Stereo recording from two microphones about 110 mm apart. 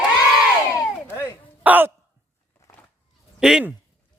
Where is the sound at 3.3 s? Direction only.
5° right (ahead or behind).